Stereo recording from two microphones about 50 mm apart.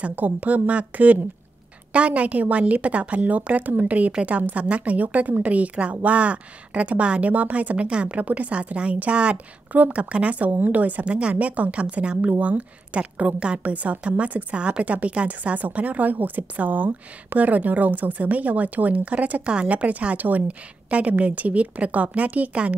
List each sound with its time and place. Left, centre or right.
0.1 s a woman's voice: right